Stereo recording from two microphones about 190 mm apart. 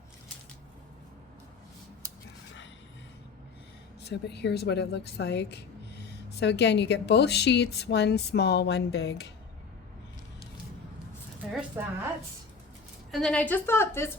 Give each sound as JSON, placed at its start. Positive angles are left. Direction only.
{"t": 4.0, "sound": "speech", "side_deg": 60}
{"t": 11.8, "sound": "a woman's voice", "side_deg": -10}
{"t": 13.1, "sound": "a woman's voice", "side_deg": 0}